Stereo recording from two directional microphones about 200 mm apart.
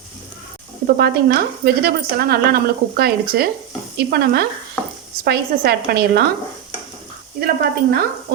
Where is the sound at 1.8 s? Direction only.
50° right (ahead or behind).